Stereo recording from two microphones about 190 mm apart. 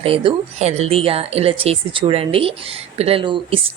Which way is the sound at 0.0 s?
30° right (ahead or behind).